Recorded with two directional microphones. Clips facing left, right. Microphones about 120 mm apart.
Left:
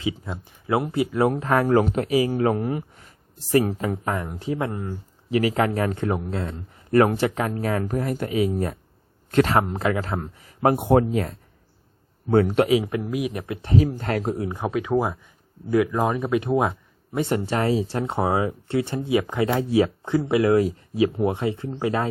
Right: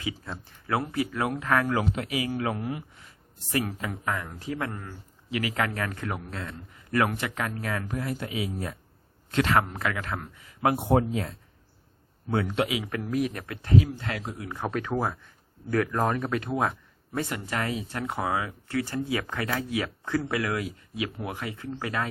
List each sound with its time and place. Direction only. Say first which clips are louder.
0.0 s speech: left 6 dB; 20° left (ahead or behind)
1.6 s speech: left 8 dB; 45° left (ahead or behind)
4.1 s speech: left 5 dB; 25° left (ahead or behind)
5.3 s speech: left 8 dB; 35° left (ahead or behind)
9.5 s speech: left 4 dB; 30° left (ahead or behind)
10.8 s speech: left 5 dB; 60° left (ahead or behind)
12.3 s speech: left 9 dB; 45° left (ahead or behind)
12.9 s speech: left 2 dB; 15° left (ahead or behind)
13.7 s speech: left 3 dB; 40° left (ahead or behind)
14.4 s speech: left 5 dB; 20° left (ahead or behind)